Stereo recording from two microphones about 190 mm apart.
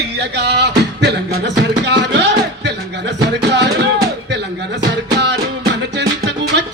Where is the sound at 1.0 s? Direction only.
60° right (ahead or behind).